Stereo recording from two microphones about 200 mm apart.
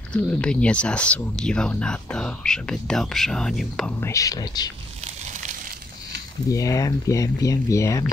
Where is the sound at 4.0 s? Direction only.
15° left (ahead or behind).